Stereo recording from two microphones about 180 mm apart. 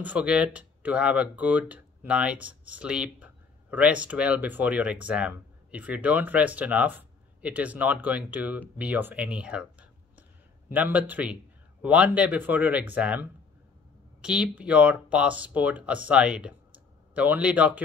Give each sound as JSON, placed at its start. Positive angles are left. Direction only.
{"t": 0.0, "sound": "speech", "side_deg": -5}